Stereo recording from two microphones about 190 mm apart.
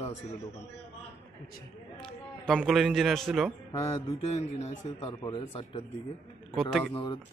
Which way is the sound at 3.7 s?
30° left (ahead or behind).